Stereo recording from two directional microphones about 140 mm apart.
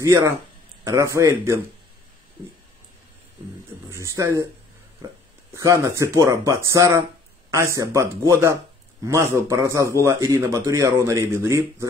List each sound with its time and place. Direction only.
0.0 s a man's voice: 20° right (ahead or behind)
4.2 s a man's voice: 25° right (ahead or behind)
5.5 s a man's voice: 20° right (ahead or behind)